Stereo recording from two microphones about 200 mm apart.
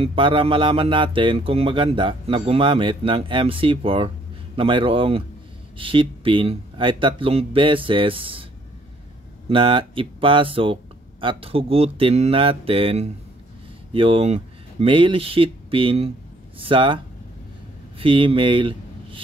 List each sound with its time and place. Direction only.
0.0 s speech: 25° right (ahead or behind)
9.5 s speech: 25° right (ahead or behind)